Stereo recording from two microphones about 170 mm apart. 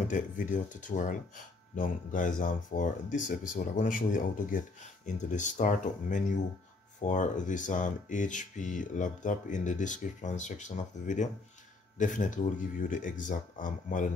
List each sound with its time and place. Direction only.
0.1 s speech: 45° left (ahead or behind)